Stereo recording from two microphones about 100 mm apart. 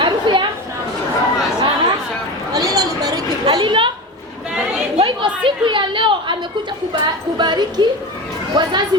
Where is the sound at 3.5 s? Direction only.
55° right (ahead or behind).